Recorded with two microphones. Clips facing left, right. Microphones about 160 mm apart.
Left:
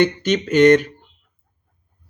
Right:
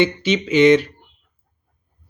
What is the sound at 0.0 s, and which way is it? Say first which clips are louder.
Speech: left 1 dB; 45° left (ahead or behind).